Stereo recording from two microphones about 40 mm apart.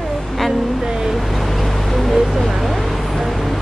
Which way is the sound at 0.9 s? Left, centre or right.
Centre.